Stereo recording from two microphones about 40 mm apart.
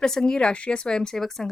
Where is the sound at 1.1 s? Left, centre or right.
Centre.